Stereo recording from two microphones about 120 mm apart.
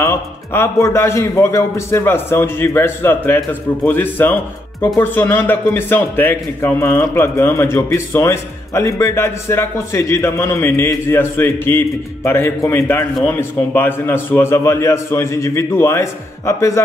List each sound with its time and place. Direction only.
0.0 s a man's voice: 20° left (ahead or behind)